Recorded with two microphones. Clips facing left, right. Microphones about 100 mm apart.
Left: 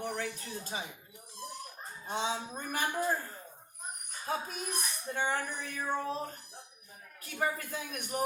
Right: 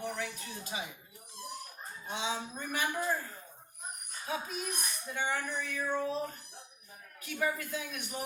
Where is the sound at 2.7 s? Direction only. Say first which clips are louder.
Left 1 dB; 40° left (ahead or behind).